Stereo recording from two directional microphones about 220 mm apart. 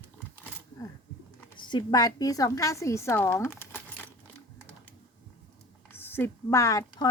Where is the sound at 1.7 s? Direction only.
20° left (ahead or behind).